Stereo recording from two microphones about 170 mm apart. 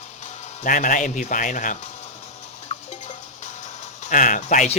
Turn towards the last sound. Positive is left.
turn(degrees=45)  # may be behind; listen again after turning